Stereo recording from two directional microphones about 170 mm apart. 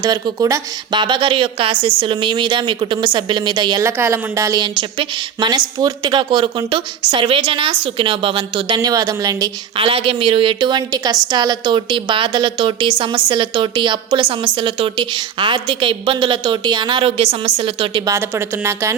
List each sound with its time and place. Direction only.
0.0 s a woman's voice: 25° right (ahead or behind)
3.8 s a woman's voice: 15° right (ahead or behind)
9.8 s a woman's voice: 35° right (ahead or behind)
18.1 s a woman's voice: 15° right (ahead or behind)